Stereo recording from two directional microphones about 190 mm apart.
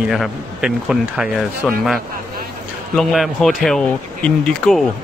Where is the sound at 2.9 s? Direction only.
Centre (ahead or behind).